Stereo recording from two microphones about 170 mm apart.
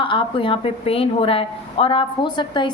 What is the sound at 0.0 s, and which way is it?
A woman's voice, 30° left (ahead or behind).